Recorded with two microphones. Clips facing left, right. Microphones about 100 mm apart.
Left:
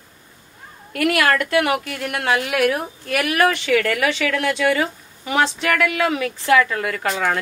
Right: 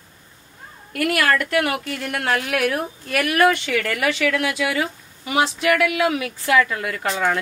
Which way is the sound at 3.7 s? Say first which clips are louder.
Left 3 dB; 60° left (ahead or behind).